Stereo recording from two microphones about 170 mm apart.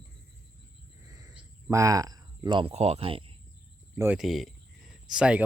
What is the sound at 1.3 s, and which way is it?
Speech, 20° right (ahead or behind).